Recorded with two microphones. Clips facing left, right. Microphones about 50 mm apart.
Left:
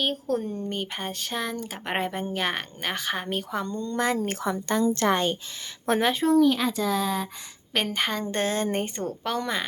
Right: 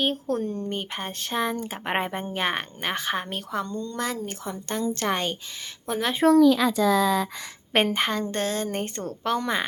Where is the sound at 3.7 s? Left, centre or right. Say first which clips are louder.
Left 3 dB; left.